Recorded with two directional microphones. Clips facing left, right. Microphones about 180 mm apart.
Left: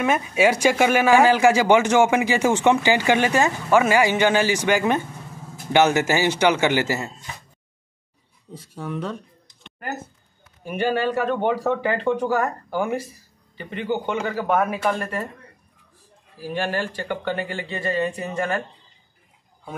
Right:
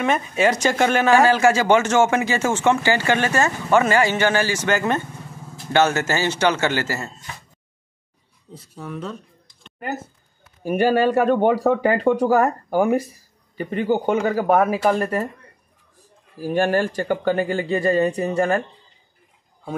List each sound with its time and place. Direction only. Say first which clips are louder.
0.0 s speech: even; 5° left (ahead or behind)
10.6 s speech: right 5 dB; 40° right (ahead or behind)
16.3 s speech: right 6 dB; 45° right (ahead or behind)